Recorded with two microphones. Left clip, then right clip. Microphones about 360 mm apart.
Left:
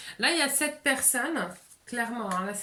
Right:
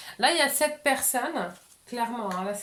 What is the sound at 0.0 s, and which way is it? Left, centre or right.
Speech, centre.